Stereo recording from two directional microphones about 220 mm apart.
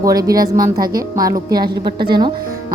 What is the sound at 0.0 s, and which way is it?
A woman's voice, 15° right (ahead or behind).